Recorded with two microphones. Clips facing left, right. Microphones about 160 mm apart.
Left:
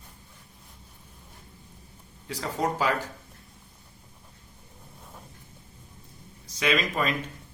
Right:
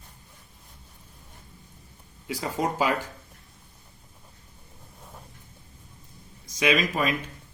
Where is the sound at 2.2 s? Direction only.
10° right (ahead or behind).